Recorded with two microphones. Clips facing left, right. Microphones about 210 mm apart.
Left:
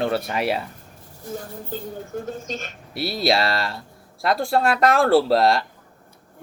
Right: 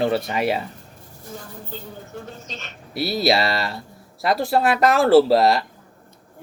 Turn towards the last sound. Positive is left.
turn(degrees=0)  # may be behind; listen again after turning